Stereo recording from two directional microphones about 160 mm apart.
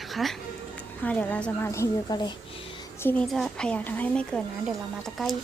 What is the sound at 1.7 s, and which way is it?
Speech, 20° left (ahead or behind).